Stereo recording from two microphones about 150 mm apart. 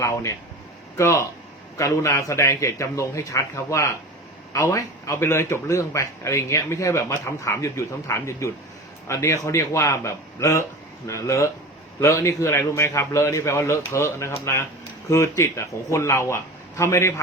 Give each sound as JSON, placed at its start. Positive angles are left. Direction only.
{"t": 0.0, "sound": "a man's voice", "side_deg": 20}